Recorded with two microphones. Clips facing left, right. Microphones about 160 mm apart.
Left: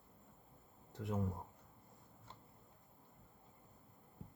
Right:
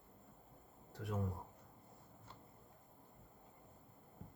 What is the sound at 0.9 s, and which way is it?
Speech, 20° left (ahead or behind).